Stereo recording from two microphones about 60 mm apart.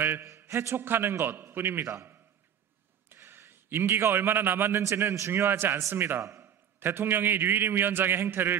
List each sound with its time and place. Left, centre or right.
0.6 s a man's voice: right